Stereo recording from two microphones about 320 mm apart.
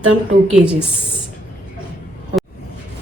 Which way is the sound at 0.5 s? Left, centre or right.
Centre.